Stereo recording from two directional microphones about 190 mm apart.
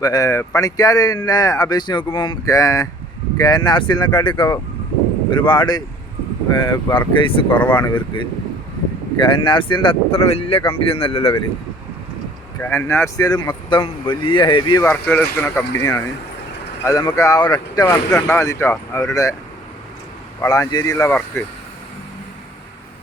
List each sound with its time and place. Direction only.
0.0 s speech: 20° left (ahead or behind)
7.5 s speech: 10° left (ahead or behind)
7.8 s speech: 25° left (ahead or behind)
12.5 s speech: 10° left (ahead or behind)
14.8 s speech: 10° left (ahead or behind)
20.4 s speech: 15° left (ahead or behind)